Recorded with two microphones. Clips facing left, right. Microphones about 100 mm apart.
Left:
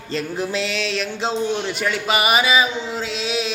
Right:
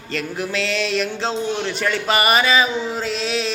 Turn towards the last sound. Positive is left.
turn(degrees=5)  # may be behind; listen again after turning